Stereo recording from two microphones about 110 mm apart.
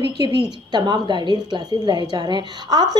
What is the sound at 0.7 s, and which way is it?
A woman's voice, 40° right (ahead or behind).